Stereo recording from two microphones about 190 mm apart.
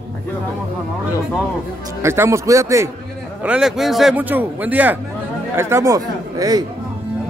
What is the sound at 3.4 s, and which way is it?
A man's voice, 5° right (ahead or behind).